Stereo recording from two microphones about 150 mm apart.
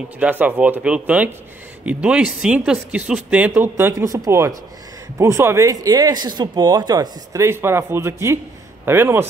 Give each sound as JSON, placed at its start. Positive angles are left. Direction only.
{"t": 0.2, "sound": "speech", "side_deg": -10}